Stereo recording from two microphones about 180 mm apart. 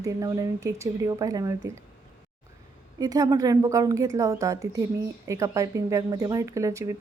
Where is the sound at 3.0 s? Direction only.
20° right (ahead or behind).